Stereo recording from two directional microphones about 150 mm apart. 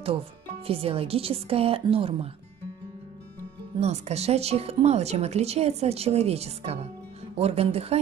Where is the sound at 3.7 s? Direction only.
45° right (ahead or behind).